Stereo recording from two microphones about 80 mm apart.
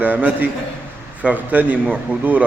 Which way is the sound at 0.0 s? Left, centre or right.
Right.